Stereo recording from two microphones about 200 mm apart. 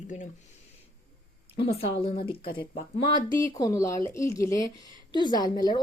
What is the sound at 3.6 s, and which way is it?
A woman's voice, 15° left (ahead or behind).